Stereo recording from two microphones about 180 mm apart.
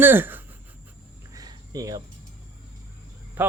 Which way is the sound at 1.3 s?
20° right (ahead or behind).